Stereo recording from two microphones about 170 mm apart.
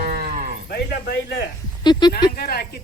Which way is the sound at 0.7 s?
65° left (ahead or behind).